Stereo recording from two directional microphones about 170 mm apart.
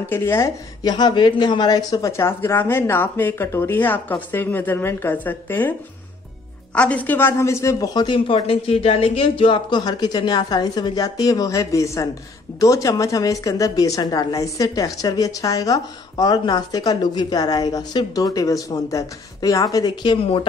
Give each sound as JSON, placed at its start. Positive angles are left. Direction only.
{"t": 0.1, "sound": "a woman's voice", "side_deg": 15}